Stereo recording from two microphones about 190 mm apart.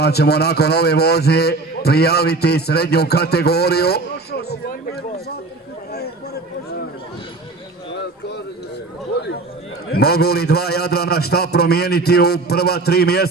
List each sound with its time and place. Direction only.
0.0 s a man's voice: 60° left (ahead or behind)
9.9 s a man's voice: 55° left (ahead or behind)